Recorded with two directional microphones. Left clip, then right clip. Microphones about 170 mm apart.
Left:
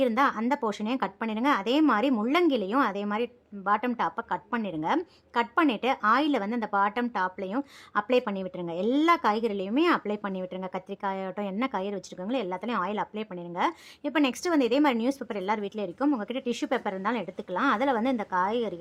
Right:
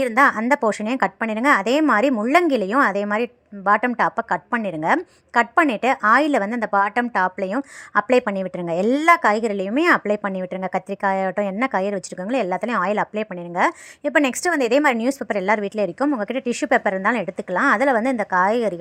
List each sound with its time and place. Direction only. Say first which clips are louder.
0.0 s a woman's voice: right 8 dB; 30° right (ahead or behind)